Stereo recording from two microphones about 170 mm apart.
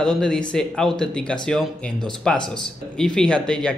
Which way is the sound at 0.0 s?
5° left (ahead or behind).